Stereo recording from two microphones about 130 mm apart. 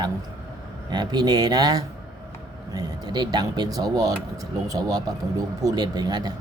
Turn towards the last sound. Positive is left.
turn(degrees=-30)  # may be behind; listen again after turning